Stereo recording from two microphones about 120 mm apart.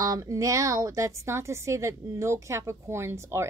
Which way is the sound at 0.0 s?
30° right (ahead or behind).